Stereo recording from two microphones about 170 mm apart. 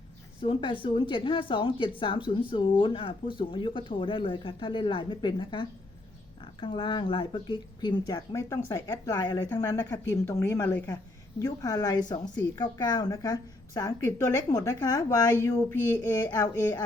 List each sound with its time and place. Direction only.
0.4 s a woman's voice: 30° left (ahead or behind); by 16.3 s 10° left (ahead or behind)